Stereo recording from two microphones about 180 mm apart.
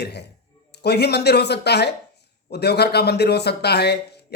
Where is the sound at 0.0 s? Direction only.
65° left (ahead or behind).